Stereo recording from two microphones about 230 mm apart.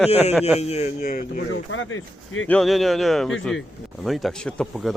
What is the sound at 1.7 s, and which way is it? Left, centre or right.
Speech, left.